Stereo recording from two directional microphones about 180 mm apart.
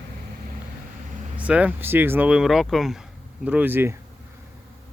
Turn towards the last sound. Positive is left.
turn(degrees=-10)  # may be behind; listen again after turning